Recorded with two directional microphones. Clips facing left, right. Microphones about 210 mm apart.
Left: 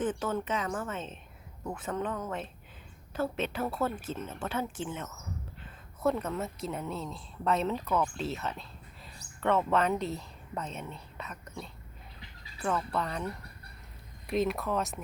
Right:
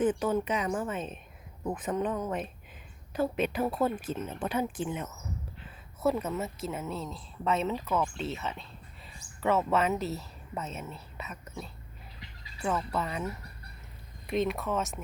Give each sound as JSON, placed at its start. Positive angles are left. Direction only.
{"t": 0.0, "sound": "a woman's voice", "side_deg": -15}